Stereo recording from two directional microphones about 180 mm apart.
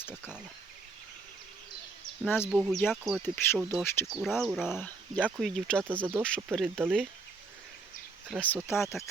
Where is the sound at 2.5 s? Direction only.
Centre (ahead or behind).